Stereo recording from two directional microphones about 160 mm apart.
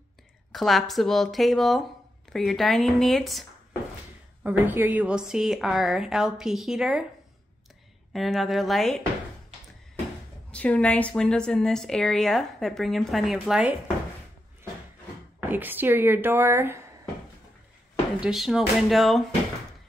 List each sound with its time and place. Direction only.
0.5 s a woman's voice: centre (ahead or behind)
4.4 s a woman's voice: 10° right (ahead or behind)
8.1 s a woman's voice: centre (ahead or behind)
10.5 s a woman's voice: 10° left (ahead or behind)
15.5 s a woman's voice: 10° right (ahead or behind)
18.2 s a woman's voice: centre (ahead or behind)